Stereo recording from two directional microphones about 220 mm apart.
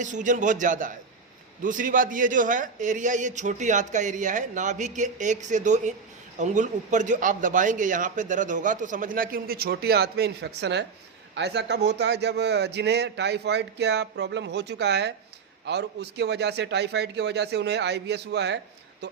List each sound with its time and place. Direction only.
0.0 s a man's voice: 35° right (ahead or behind); by 18.6 s 50° right (ahead or behind)